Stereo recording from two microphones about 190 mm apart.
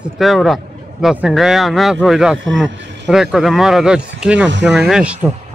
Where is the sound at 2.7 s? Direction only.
70° right (ahead or behind).